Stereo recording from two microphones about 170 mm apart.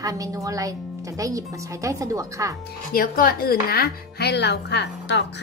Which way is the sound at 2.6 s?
55° left (ahead or behind).